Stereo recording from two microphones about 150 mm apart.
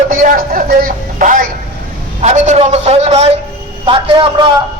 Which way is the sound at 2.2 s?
50° right (ahead or behind).